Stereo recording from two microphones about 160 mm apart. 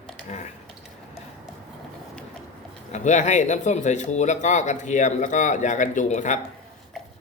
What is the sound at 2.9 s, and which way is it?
Speech, 50° left (ahead or behind).